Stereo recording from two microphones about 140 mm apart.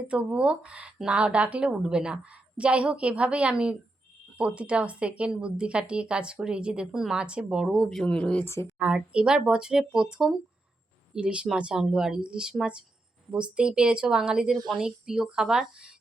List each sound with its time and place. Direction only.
0.1 s speech: 10° right (ahead or behind); by 8.4 s 10° left (ahead or behind)
8.4 s a woman's voice: 20° left (ahead or behind)
8.8 s speech: 5° right (ahead or behind)